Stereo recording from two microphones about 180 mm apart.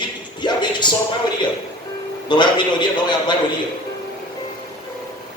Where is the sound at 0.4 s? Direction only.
25° left (ahead or behind).